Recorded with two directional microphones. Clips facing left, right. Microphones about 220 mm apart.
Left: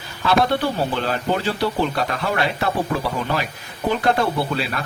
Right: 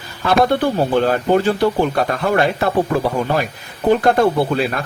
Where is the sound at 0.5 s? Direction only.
50° right (ahead or behind).